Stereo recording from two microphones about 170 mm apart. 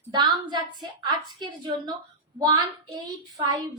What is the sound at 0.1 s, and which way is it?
A woman's voice, 25° right (ahead or behind).